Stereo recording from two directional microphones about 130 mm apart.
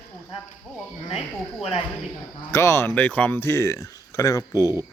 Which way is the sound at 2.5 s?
20° left (ahead or behind).